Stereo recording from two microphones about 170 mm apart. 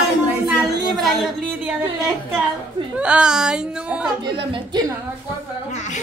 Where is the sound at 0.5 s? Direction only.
Centre (ahead or behind).